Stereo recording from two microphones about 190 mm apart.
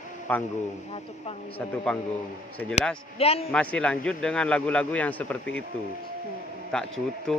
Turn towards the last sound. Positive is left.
turn(degrees=5)  # may be behind; listen again after turning